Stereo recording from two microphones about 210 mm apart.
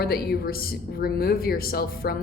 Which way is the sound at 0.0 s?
50° left (ahead or behind).